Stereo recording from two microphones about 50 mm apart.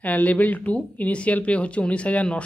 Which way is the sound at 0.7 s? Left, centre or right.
Left.